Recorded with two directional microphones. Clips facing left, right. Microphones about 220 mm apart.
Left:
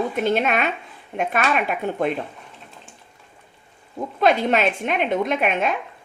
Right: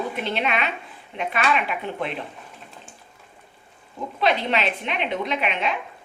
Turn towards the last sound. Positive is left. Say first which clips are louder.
# left 4 dB
turn(degrees=50)  # may be behind; listen again after turning